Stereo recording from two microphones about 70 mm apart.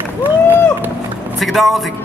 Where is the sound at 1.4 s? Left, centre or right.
Centre.